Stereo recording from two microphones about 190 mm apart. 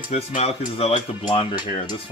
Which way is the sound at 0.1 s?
35° left (ahead or behind).